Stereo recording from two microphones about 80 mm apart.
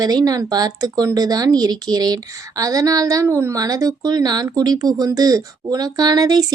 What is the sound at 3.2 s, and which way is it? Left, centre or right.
Speech, right.